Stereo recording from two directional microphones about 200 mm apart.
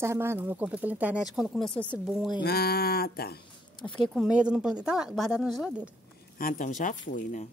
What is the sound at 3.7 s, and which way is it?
Speech, 25° left (ahead or behind).